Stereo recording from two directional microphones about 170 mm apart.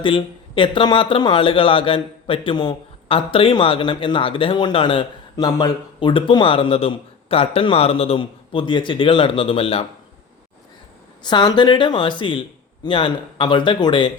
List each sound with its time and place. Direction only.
0.0 s speech: 30° left (ahead or behind)
11.2 s speech: 25° left (ahead or behind)